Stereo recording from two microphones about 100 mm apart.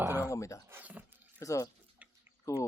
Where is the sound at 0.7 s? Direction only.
15° right (ahead or behind).